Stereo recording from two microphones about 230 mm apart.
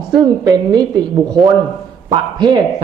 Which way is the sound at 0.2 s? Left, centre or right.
Centre.